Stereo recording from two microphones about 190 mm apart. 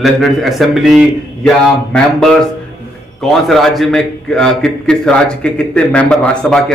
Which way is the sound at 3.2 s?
Centre (ahead or behind).